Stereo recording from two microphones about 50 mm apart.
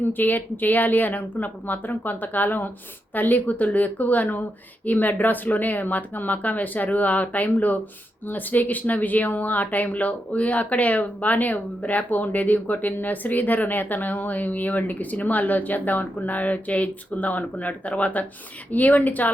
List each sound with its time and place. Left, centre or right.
0.0 s speech: left